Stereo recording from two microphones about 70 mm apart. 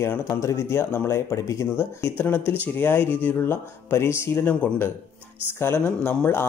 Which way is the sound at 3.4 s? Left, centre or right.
Left.